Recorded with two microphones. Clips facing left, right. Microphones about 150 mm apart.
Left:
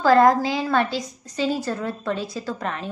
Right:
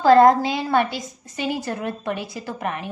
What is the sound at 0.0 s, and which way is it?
A woman's voice, 25° right (ahead or behind).